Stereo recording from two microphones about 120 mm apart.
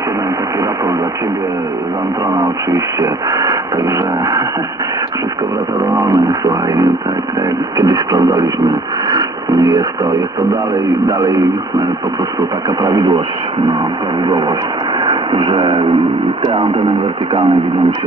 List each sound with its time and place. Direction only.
2.3 s speech: 30° right (ahead or behind)
5.8 s speech: 30° right (ahead or behind)
15.0 s a sound: 40° right (ahead or behind)
16.4 s speech: 40° right (ahead or behind)